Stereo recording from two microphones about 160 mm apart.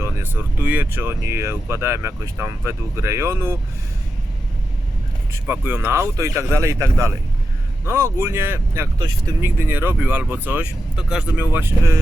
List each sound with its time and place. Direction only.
0.0 s speech: 10° right (ahead or behind)
5.3 s speech: 10° right (ahead or behind)